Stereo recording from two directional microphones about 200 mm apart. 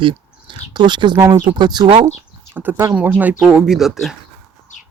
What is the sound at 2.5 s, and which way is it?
Speech, 10° right (ahead or behind).